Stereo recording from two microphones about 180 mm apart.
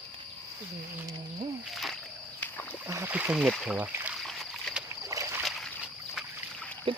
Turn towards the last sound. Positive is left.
turn(degrees=-30)  # may be behind; listen again after turning